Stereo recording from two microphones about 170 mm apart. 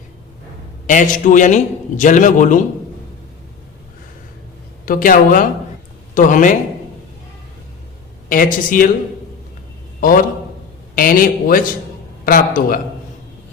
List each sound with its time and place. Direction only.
0.9 s a man's voice: 50° left (ahead or behind)
4.9 s a man's voice: 55° left (ahead or behind)
8.3 s a man's voice: 55° left (ahead or behind)
10.0 s a man's voice: 55° left (ahead or behind)